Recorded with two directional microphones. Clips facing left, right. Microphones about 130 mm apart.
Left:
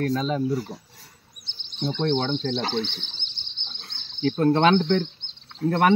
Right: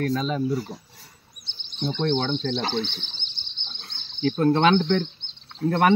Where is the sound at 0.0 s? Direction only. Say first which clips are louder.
Left 1 dB; 30° left (ahead or behind).